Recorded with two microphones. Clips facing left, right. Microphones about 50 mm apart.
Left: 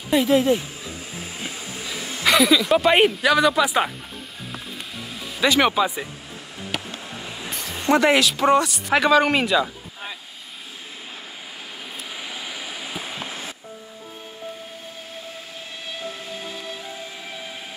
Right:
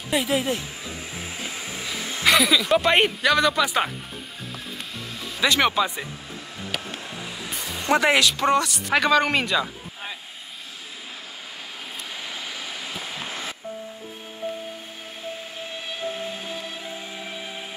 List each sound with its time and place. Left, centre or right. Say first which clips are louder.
0.1 s speech: left 6 dB; centre
1.6 s music: even; right
2.2 s speech: left 2 dB; centre
5.1 s speech: left 2 dB; centre
6.7 s music: left 2 dB; centre
8.0 s speech: left 2 dB; centre
8.5 s speech: left 3 dB; centre
8.9 s speech: left 3 dB; centre